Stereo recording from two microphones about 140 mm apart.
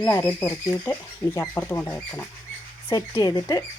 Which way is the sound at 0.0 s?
20° left (ahead or behind).